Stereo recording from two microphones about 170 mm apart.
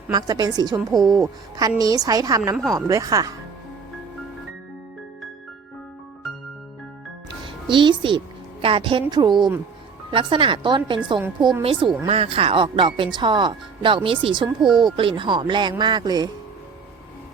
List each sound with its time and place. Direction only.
0.1 s speech: 25° right (ahead or behind)
7.7 s speech: 30° right (ahead or behind)
14.6 s speech: centre (ahead or behind)
14.9 s speech: 30° right (ahead or behind)